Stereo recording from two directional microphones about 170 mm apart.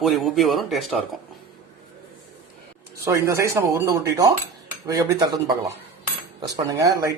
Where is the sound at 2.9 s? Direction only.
20° right (ahead or behind).